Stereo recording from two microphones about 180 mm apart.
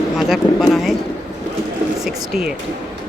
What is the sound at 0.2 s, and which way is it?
Speech, centre (ahead or behind).